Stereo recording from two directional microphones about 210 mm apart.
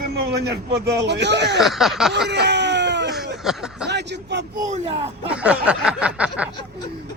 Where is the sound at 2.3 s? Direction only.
55° right (ahead or behind).